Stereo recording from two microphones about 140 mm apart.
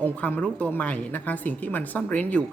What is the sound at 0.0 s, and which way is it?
Speech, 10° left (ahead or behind).